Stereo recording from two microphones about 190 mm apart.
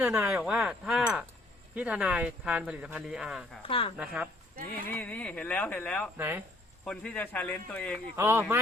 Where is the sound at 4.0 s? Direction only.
5° right (ahead or behind).